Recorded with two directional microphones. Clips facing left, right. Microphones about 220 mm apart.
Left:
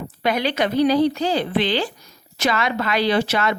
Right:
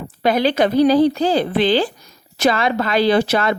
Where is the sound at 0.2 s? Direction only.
35° right (ahead or behind).